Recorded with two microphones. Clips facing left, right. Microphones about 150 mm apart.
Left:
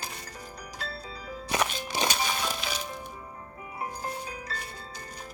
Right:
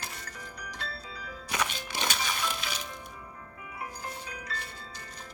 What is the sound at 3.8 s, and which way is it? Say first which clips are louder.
Music: left 5 dB; 35° left (ahead or behind).